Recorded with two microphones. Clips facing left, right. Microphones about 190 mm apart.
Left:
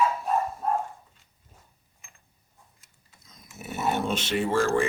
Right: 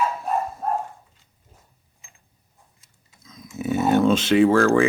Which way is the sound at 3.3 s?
90° right.